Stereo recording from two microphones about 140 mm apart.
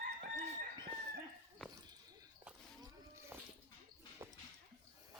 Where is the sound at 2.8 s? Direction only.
20° right (ahead or behind).